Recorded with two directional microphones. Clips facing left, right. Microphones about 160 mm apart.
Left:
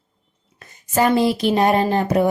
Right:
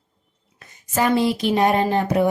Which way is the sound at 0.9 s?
35° left (ahead or behind).